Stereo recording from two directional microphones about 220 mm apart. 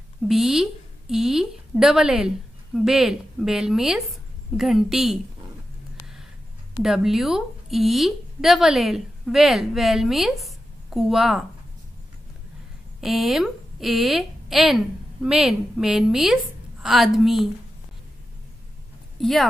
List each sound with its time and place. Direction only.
0.3 s a woman's voice: centre (ahead or behind)
6.8 s a woman's voice: centre (ahead or behind)
13.0 s a woman's voice: centre (ahead or behind)
19.1 s speech: centre (ahead or behind)